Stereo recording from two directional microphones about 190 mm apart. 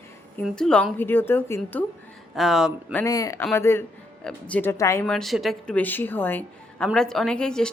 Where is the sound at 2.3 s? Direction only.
Centre (ahead or behind).